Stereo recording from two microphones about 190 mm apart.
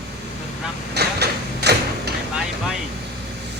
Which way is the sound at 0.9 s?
60° right (ahead or behind).